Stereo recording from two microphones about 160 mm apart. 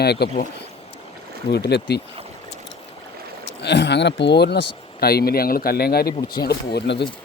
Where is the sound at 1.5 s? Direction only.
90° left.